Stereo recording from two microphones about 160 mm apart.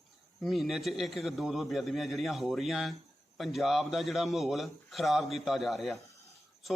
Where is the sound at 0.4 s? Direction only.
Centre (ahead or behind).